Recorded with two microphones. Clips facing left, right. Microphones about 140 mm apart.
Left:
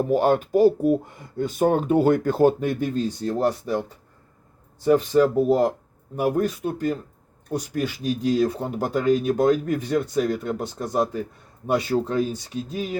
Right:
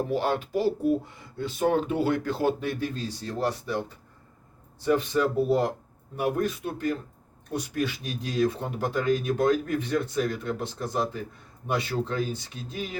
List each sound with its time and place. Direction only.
0.0 s speech: 45° left (ahead or behind)
4.9 s speech: 40° left (ahead or behind)